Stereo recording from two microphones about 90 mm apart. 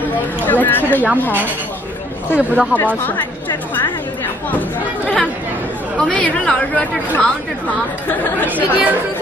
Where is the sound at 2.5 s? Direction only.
15° right (ahead or behind).